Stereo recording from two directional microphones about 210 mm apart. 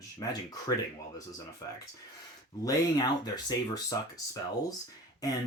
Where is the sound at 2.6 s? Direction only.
20° left (ahead or behind).